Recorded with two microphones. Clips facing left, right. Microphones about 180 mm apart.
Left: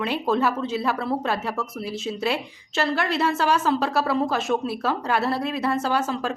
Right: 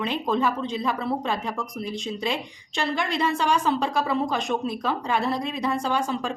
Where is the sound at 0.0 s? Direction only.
5° left (ahead or behind).